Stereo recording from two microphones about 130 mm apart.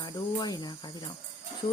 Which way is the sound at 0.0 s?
30° left (ahead or behind).